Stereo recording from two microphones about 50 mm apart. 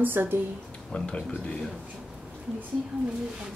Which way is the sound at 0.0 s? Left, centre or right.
Right.